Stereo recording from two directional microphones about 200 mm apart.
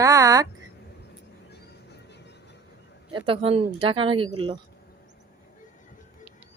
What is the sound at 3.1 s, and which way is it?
Speech, 25° right (ahead or behind).